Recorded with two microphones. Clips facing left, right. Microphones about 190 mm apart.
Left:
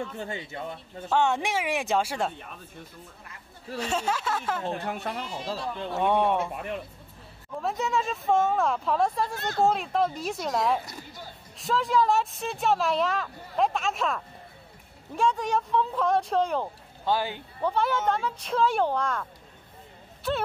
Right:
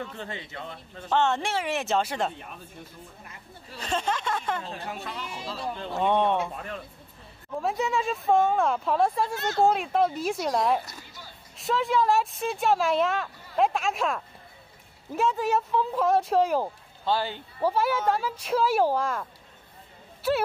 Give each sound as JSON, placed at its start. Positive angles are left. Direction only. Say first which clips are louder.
{"t": 0.3, "sound": "speech", "louder": "left 3 dB", "side_deg": 20}
{"t": 3.8, "sound": "speech", "louder": "even", "side_deg": 5}
{"t": 4.6, "sound": "speech", "louder": "left 5 dB", "side_deg": 55}
{"t": 5.9, "sound": "speech", "louder": "even", "side_deg": 5}
{"t": 7.6, "sound": "speech", "louder": "right 1 dB", "side_deg": 0}
{"t": 10.9, "sound": "a sound", "louder": "left 4 dB", "side_deg": 50}
{"t": 11.5, "sound": "speech", "louder": "even", "side_deg": 0}
{"t": 17.0, "sound": "speech", "louder": "even", "side_deg": 15}
{"t": 17.6, "sound": "speech", "louder": "right 1 dB", "side_deg": -5}